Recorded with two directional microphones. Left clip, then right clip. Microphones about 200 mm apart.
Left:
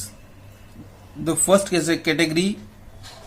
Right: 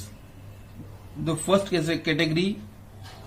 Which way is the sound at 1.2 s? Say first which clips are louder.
Left 5 dB; 45° left (ahead or behind).